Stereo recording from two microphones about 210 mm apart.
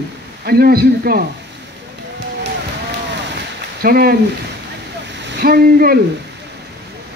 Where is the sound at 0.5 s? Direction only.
45° right (ahead or behind).